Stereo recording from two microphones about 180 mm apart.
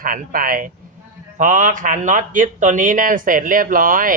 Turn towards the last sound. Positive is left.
turn(degrees=-50)  # may be behind; listen again after turning